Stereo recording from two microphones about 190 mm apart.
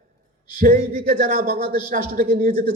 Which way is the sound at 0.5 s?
45° right (ahead or behind).